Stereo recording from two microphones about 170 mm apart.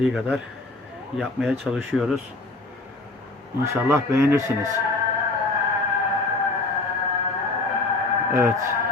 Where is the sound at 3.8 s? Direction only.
15° right (ahead or behind).